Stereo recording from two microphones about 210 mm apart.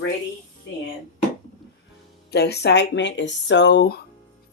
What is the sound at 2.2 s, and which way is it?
Speech, 50° left (ahead or behind).